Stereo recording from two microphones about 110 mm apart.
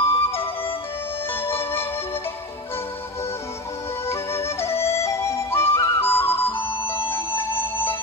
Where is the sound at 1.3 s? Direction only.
20° left (ahead or behind).